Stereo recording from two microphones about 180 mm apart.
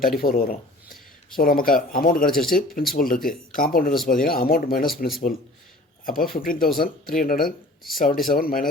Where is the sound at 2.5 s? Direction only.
50° left (ahead or behind).